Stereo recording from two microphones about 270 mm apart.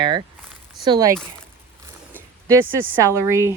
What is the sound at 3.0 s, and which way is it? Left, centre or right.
Speech, centre.